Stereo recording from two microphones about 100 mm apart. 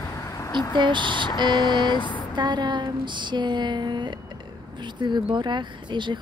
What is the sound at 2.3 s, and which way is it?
Speech, 50° right (ahead or behind).